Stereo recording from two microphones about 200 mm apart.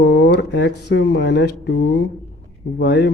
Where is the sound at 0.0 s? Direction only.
60° left (ahead or behind).